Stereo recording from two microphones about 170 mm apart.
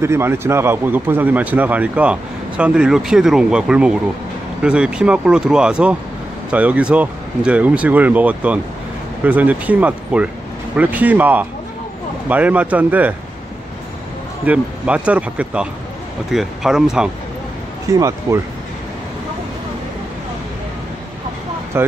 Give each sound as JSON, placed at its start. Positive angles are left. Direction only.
{"t": 0.0, "sound": "a man's voice", "side_deg": -15}
{"t": 14.4, "sound": "a man's voice", "side_deg": -10}
{"t": 17.8, "sound": "speech", "side_deg": -20}
{"t": 21.7, "sound": "a man's voice", "side_deg": -15}